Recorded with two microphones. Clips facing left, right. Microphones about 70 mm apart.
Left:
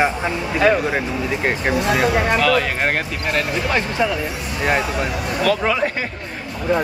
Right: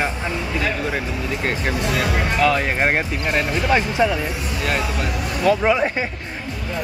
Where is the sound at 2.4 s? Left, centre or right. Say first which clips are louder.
Even; right.